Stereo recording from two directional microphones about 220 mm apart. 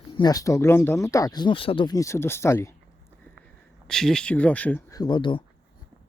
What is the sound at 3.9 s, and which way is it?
Speech, centre (ahead or behind).